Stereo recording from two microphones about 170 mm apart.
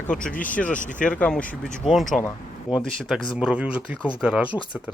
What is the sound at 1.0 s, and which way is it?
A man's voice, 5° left (ahead or behind).